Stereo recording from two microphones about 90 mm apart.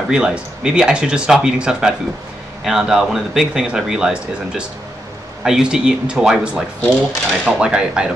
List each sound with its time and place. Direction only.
0.1 s speech: 10° right (ahead or behind)
6.5 s speech: 15° right (ahead or behind)